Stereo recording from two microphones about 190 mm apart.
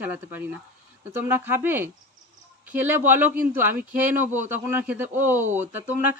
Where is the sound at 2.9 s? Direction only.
10° right (ahead or behind).